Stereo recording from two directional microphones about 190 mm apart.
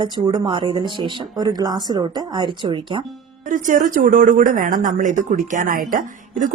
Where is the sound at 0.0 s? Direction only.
25° right (ahead or behind).